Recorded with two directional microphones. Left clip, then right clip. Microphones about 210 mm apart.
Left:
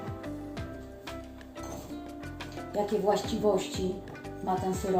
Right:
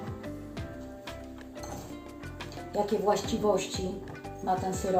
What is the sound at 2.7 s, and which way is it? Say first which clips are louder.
Speech: even; centre (ahead or behind).